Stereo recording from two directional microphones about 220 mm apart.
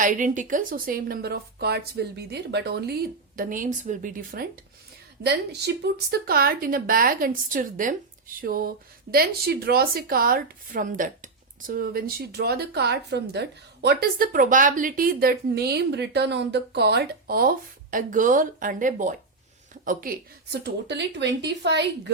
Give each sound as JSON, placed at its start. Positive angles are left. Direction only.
{"t": 0.0, "sound": "speech", "side_deg": -35}
{"t": 5.2, "sound": "speech", "side_deg": -50}